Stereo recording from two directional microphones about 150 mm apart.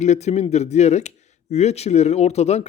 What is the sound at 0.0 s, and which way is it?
Speech, 50° left (ahead or behind).